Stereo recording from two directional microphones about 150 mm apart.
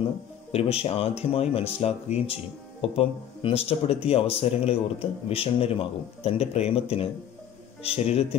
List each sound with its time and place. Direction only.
0.5 s speech: 40° left (ahead or behind)